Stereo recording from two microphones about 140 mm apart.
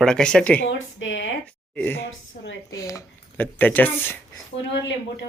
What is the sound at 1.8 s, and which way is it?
Speech, 15° left (ahead or behind).